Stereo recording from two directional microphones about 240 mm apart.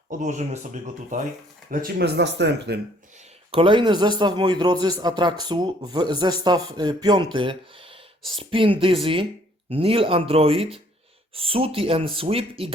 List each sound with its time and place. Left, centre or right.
0.1 s speech: right
3.5 s speech: right